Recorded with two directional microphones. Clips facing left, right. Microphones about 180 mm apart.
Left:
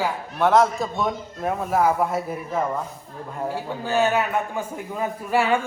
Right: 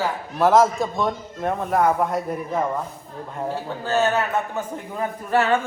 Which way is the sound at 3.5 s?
10° left (ahead or behind).